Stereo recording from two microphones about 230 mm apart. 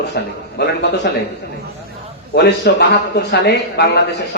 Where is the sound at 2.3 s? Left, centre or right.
Left.